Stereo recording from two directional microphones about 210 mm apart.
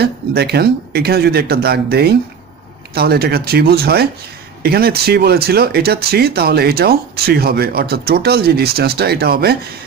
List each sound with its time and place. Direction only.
0.0 s speech: 50° right (ahead or behind)